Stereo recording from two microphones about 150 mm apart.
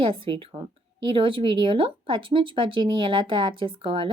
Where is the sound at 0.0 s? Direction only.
35° right (ahead or behind).